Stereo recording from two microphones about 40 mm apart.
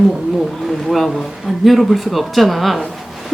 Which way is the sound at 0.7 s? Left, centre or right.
Centre.